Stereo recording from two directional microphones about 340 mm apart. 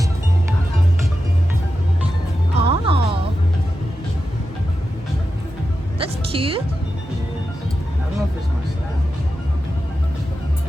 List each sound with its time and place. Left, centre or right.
2.6 s music: centre
6.0 s music: centre